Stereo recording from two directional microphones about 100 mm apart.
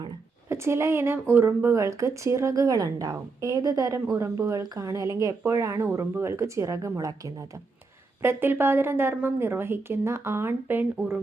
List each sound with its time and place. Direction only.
0.4 s a woman's voice: 25° right (ahead or behind)
8.2 s a woman's voice: 20° right (ahead or behind)